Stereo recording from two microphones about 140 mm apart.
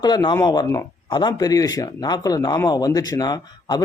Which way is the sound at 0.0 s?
30° left (ahead or behind).